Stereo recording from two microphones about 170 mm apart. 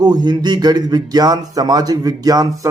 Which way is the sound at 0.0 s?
25° right (ahead or behind).